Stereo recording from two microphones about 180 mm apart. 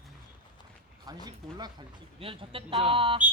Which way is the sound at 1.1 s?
20° right (ahead or behind).